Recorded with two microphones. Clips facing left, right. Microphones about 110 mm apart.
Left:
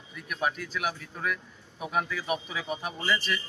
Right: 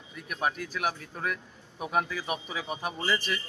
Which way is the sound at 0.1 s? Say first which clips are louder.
Even; 35° right (ahead or behind).